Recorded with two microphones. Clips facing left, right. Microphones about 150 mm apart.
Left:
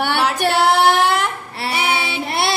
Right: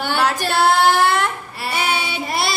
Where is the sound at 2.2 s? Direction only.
65° left (ahead or behind).